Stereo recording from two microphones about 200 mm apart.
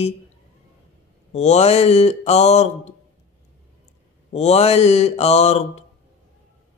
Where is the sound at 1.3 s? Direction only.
35° left (ahead or behind).